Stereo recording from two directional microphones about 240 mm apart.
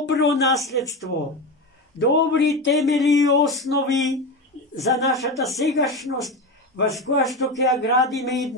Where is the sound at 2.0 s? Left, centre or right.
Left.